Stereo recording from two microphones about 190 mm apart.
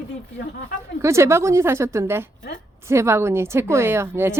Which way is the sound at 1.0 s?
15° right (ahead or behind).